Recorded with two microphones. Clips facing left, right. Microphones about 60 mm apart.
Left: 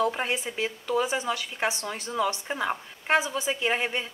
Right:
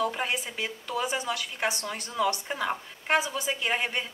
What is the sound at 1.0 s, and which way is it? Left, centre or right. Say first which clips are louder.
A woman's voice: left 2 dB; left.